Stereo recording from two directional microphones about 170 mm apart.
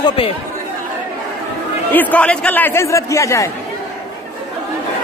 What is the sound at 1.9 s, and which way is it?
Speech, 10° left (ahead or behind).